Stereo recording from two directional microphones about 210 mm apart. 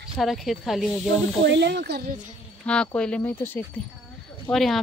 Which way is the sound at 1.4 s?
55° right (ahead or behind).